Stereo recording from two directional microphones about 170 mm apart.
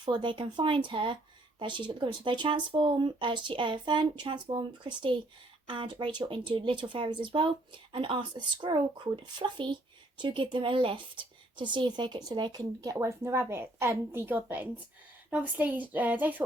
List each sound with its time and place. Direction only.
0.0 s speech: 25° right (ahead or behind); by 16.4 s 10° right (ahead or behind)